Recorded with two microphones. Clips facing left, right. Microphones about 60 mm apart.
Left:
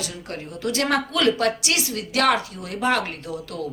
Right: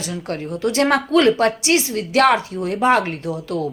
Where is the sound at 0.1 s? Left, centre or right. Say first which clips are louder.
Right 8 dB; right.